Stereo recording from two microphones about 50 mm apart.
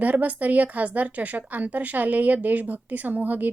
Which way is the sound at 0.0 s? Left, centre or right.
Right.